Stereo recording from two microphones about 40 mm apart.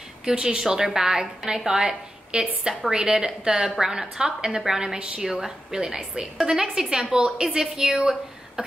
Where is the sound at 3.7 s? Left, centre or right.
Centre.